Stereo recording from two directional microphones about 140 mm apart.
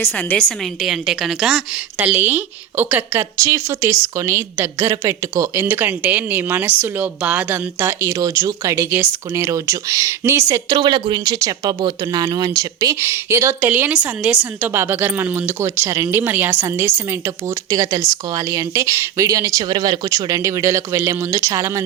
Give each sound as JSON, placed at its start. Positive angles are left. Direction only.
{"t": 0.2, "sound": "a woman's voice", "side_deg": 10}